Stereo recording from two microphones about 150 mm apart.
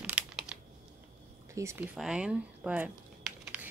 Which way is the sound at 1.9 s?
5° right (ahead or behind).